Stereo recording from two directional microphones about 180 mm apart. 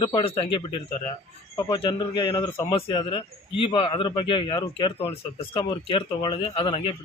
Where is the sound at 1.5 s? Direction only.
25° left (ahead or behind).